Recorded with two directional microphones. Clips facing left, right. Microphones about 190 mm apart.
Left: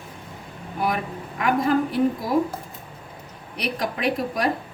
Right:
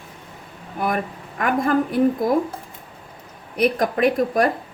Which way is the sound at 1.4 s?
50° right (ahead or behind).